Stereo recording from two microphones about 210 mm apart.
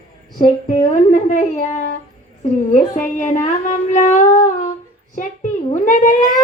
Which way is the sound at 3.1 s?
35° left (ahead or behind).